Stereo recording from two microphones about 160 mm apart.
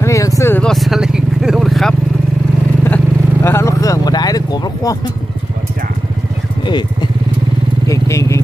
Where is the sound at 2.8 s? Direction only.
10° left (ahead or behind).